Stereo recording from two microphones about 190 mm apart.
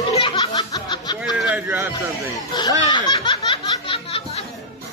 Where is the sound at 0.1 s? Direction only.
25° left (ahead or behind).